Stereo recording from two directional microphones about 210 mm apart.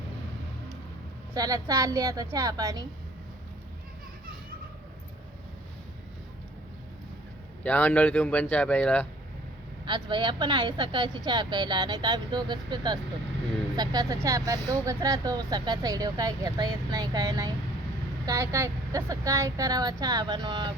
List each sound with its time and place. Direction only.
1.3 s speech: 15° right (ahead or behind)
7.6 s speech: 10° left (ahead or behind)
9.8 s speech: 20° right (ahead or behind)